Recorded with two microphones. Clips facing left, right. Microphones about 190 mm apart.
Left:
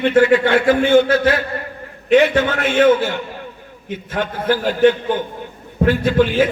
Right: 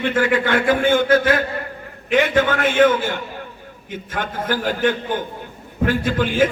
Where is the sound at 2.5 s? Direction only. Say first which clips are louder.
Even; 50° right (ahead or behind).